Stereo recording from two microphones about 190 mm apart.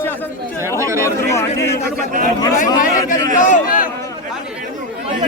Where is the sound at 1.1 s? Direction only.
15° left (ahead or behind).